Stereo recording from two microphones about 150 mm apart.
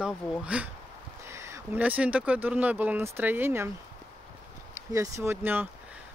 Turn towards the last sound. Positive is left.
turn(degrees=-15)  # may be behind; listen again after turning